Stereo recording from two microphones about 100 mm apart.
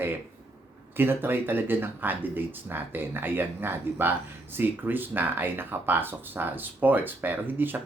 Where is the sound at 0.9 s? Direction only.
20° right (ahead or behind).